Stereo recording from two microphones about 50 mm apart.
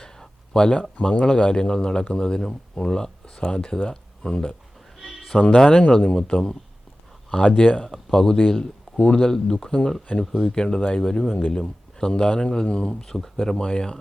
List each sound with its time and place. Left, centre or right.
0.0 s a sound: centre
1.2 s speech: centre
4.9 s bleat: centre
5.5 s speech: centre
13.0 s speech: centre